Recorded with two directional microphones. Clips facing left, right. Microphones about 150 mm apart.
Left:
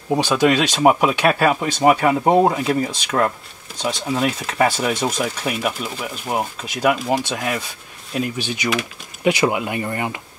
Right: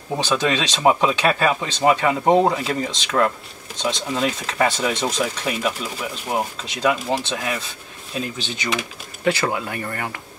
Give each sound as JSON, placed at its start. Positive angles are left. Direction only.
{"t": 0.1, "sound": "speech", "side_deg": 10}